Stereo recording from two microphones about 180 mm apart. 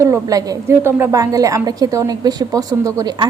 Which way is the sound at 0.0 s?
20° right (ahead or behind).